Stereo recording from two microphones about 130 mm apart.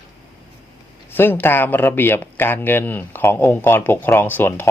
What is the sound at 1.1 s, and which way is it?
Speech, 15° left (ahead or behind).